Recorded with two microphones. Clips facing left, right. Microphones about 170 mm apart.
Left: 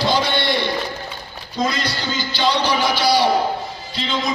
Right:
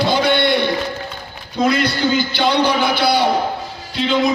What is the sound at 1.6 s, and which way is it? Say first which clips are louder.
Speech: right 6 dB; 60° right (ahead or behind).